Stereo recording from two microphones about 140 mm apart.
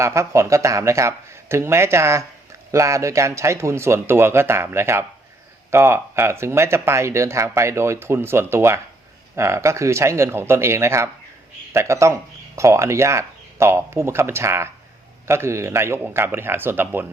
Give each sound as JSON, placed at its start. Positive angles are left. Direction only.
{"t": 0.0, "sound": "speech", "side_deg": -20}